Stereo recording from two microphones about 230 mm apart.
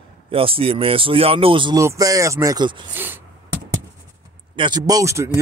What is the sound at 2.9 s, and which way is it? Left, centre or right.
Speech, centre.